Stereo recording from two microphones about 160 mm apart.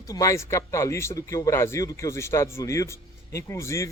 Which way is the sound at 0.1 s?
20° left (ahead or behind).